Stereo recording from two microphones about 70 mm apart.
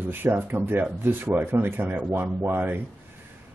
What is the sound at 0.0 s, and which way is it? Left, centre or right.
Speech, right.